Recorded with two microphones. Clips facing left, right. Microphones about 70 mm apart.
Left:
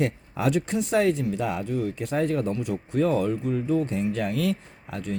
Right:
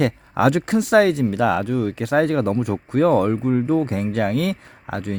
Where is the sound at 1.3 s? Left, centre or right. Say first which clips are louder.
Right 8 dB; right.